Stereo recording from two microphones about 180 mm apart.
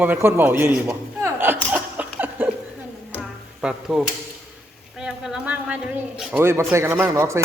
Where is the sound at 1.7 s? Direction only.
10° right (ahead or behind).